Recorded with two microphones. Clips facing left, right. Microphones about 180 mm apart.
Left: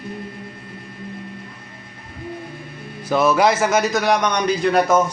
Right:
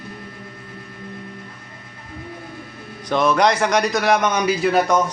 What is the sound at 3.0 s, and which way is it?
A man's voice, 5° left (ahead or behind).